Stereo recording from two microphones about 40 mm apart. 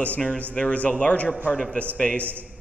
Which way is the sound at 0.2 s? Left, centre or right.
Left.